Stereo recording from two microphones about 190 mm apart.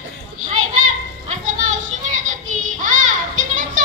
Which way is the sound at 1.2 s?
40° right (ahead or behind).